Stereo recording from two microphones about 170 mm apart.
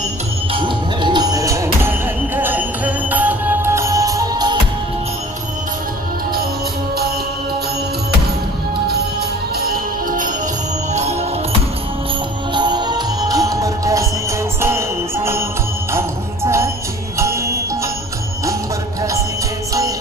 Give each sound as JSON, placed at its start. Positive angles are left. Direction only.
{"t": 0.5, "sound": "music", "side_deg": -30}
{"t": 9.6, "sound": "music", "side_deg": -60}
{"t": 10.9, "sound": "music", "side_deg": -40}
{"t": 12.5, "sound": "music", "side_deg": -25}